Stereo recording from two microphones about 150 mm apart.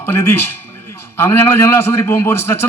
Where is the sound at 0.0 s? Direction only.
15° left (ahead or behind).